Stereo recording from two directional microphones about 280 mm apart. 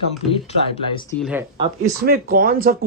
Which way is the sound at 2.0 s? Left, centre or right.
Right.